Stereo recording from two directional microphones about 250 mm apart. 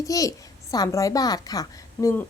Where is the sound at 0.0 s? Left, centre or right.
Centre.